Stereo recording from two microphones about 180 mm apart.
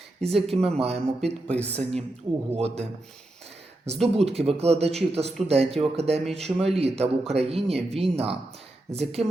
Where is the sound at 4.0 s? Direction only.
Centre (ahead or behind).